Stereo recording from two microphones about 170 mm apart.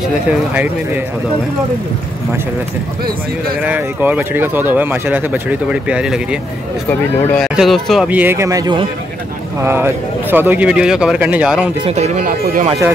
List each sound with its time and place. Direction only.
0.3 s speech: 10° right (ahead or behind)
3.6 s speech: 10° right (ahead or behind)
6.9 s speech: 10° left (ahead or behind)
7.4 s speech: centre (ahead or behind)
11.8 s speech: 40° right (ahead or behind)